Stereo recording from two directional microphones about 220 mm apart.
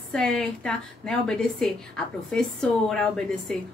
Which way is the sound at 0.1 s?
5° left (ahead or behind).